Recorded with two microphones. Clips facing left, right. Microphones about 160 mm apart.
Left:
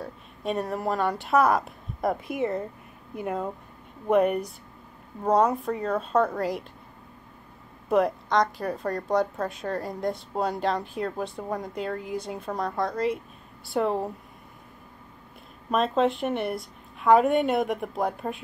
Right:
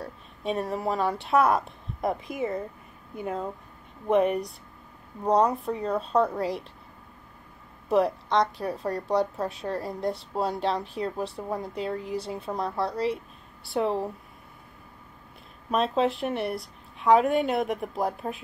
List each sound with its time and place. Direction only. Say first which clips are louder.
0.0 s a woman's voice: left 1 dB; centre (ahead or behind)
7.9 s a woman's voice: even; centre (ahead or behind)
15.7 s a woman's voice: left 1 dB; centre (ahead or behind)